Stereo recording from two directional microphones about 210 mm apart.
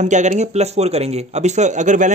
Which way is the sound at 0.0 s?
35° right (ahead or behind).